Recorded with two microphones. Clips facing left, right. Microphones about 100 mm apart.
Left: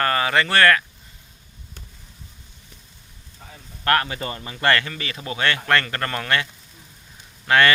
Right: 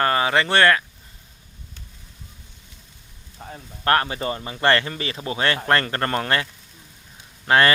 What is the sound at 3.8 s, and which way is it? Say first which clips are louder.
Speech: right 1 dB; 30° right (ahead or behind).